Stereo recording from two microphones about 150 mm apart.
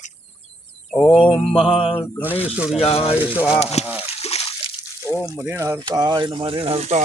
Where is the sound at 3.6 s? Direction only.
45° left (ahead or behind).